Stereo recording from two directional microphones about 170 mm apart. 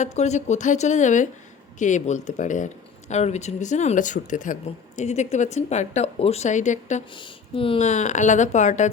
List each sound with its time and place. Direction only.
0.0 s speech: 40° left (ahead or behind)
7.1 s speech: 30° left (ahead or behind); by 8.9 s 45° left (ahead or behind)